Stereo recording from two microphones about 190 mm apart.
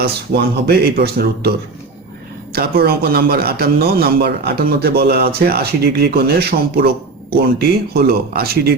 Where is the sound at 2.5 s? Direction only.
55° right (ahead or behind).